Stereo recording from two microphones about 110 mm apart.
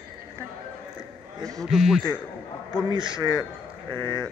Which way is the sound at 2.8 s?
45° right (ahead or behind).